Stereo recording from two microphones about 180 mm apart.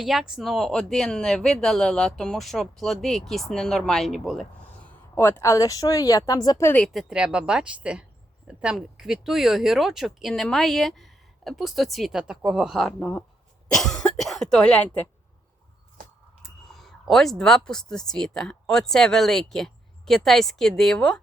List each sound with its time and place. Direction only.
0.0 s speech: centre (ahead or behind)
4.9 s speech: 10° left (ahead or behind)
6.8 s speech: centre (ahead or behind)
13.0 s speech: 10° left (ahead or behind)
16.4 s speech: centre (ahead or behind)